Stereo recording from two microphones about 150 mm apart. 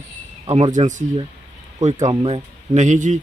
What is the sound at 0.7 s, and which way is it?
Speech, 55° right (ahead or behind).